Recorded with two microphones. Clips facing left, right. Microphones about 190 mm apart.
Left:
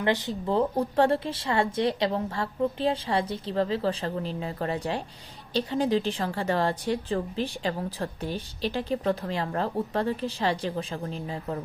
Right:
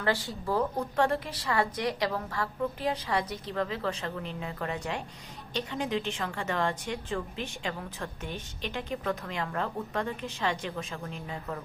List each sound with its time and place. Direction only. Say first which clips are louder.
0.0 s a woman's voice: left 4 dB; 20° left (ahead or behind)